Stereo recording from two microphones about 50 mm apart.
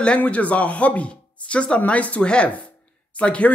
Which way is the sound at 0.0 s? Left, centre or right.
Left.